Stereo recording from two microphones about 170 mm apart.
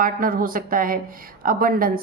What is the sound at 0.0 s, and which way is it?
Speech, 55° right (ahead or behind).